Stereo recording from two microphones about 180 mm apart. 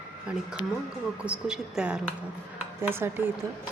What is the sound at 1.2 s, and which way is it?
A woman's voice, 5° right (ahead or behind).